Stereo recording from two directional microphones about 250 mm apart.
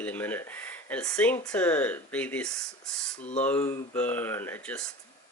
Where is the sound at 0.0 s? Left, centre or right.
Centre.